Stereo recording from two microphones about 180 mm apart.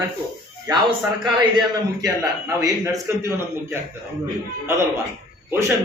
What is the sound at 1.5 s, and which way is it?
A man's voice, 20° right (ahead or behind).